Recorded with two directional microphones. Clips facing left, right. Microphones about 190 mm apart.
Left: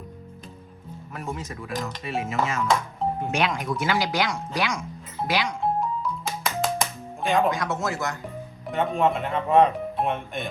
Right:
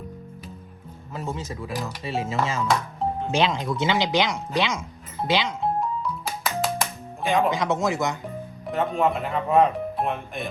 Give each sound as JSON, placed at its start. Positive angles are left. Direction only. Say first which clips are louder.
{"t": 1.1, "sound": "speech", "louder": "right 2 dB", "side_deg": -25}
{"t": 5.8, "sound": "music", "louder": "even", "side_deg": 0}
{"t": 7.5, "sound": "speech", "louder": "right 4 dB", "side_deg": -20}
{"t": 8.6, "sound": "speech", "louder": "even", "side_deg": 0}